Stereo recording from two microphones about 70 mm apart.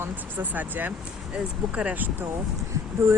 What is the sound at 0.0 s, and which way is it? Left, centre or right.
Speech, right.